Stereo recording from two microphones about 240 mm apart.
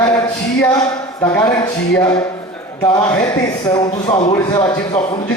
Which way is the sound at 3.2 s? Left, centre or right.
Centre.